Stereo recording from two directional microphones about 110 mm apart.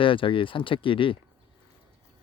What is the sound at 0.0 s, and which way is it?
Speech, 50° left (ahead or behind).